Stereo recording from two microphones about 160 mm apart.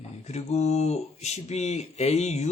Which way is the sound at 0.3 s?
40° left (ahead or behind).